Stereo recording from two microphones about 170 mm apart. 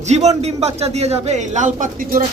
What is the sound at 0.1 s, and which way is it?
A man's voice, 40° right (ahead or behind).